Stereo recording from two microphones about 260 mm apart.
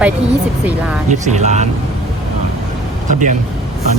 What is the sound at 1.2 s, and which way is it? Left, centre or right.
Speech, right.